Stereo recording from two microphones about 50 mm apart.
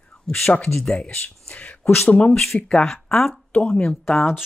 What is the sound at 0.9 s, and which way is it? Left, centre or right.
Speech, left.